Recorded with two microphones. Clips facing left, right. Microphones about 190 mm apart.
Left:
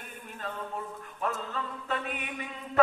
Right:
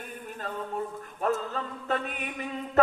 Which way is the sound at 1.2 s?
45° right (ahead or behind).